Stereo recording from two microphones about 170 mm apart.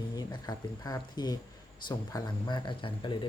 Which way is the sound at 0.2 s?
25° left (ahead or behind).